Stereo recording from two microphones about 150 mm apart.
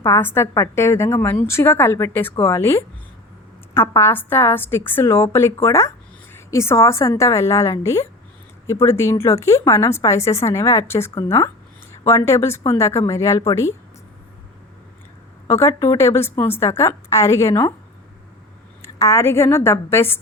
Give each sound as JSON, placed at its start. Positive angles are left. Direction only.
{"t": 0.0, "sound": "a woman's voice", "side_deg": 15}
{"t": 15.4, "sound": "speech", "side_deg": 20}
{"t": 18.8, "sound": "a woman's voice", "side_deg": 20}